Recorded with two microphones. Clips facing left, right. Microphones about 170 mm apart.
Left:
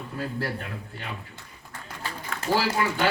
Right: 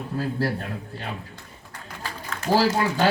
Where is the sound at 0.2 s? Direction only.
40° right (ahead or behind).